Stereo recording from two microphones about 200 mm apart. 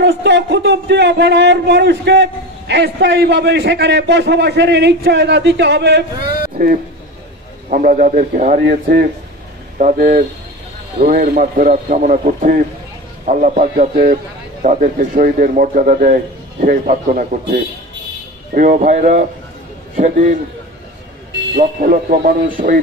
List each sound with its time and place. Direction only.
0.0 s a man's voice: 60° right (ahead or behind)
7.7 s a man's voice: 45° right (ahead or behind)
21.5 s a man's voice: 45° right (ahead or behind)